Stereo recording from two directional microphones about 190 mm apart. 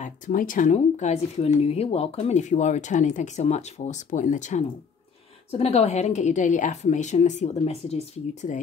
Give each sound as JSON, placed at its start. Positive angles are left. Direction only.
{"t": 0.0, "sound": "speech", "side_deg": 45}